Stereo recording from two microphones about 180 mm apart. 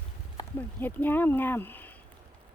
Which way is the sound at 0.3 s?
10° left (ahead or behind).